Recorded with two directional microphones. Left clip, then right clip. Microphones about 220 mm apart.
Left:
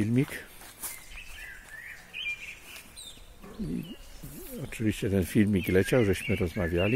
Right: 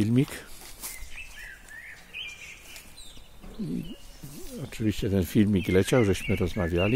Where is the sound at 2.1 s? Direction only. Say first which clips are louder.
Left 2 dB; 20° left (ahead or behind).